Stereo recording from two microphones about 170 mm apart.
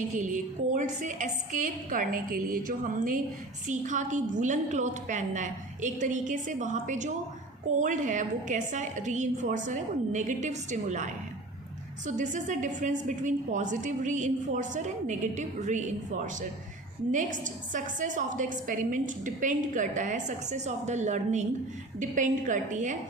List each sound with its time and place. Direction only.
0.2 s a woman's voice: 50° right (ahead or behind)
17.1 s a woman's voice: 50° right (ahead or behind)